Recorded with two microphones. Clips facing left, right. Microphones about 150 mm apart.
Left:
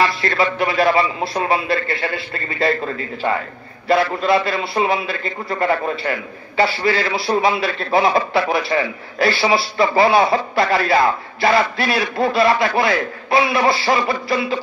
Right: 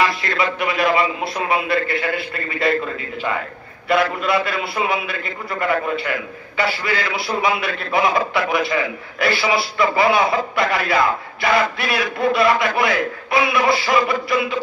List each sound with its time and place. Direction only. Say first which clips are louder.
0.0 s a man's voice: left 2 dB; 30° left (ahead or behind)